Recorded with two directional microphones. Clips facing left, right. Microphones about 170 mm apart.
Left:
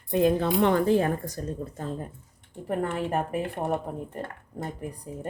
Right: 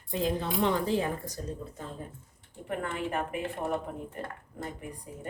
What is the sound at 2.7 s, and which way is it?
Speech, 40° left (ahead or behind).